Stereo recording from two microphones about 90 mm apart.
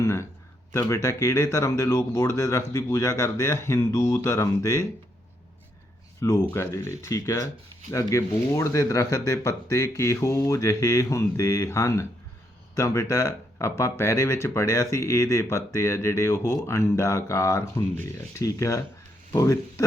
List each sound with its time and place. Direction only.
0.0 s a sound: 35° left (ahead or behind)
0.8 s speech: 30° left (ahead or behind)
6.1 s speech: 35° left (ahead or behind)